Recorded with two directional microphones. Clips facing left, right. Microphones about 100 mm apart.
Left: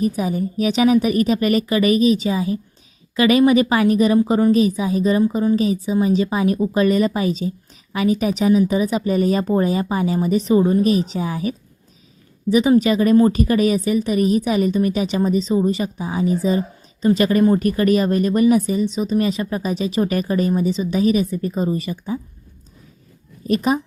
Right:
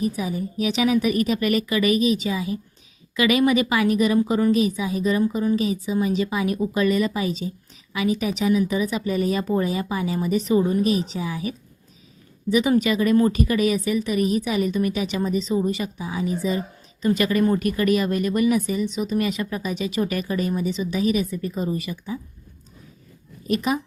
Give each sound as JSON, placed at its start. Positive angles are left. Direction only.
{"t": 0.0, "sound": "speech", "side_deg": 45}
{"t": 12.5, "sound": "speech", "side_deg": 35}
{"t": 23.5, "sound": "speech", "side_deg": 40}